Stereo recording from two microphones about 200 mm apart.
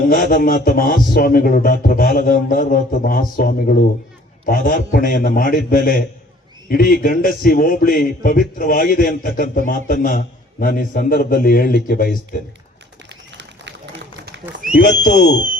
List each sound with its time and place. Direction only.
0.1 s a man's voice: 50° left (ahead or behind)
13.3 s run: 60° right (ahead or behind)
14.8 s speech: 40° left (ahead or behind)